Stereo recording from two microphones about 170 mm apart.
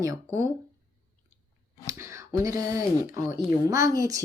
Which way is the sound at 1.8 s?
15° right (ahead or behind).